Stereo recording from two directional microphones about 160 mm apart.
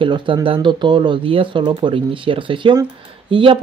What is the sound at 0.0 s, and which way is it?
Speech, 30° right (ahead or behind).